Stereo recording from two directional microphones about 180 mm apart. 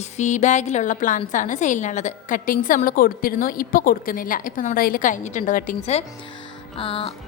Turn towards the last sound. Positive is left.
turn(degrees=30)  # may be behind; listen again after turning